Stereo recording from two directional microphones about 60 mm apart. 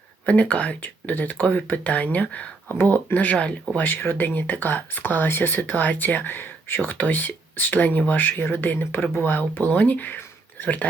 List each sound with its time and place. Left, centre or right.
0.3 s speech: left
3.8 s speech: left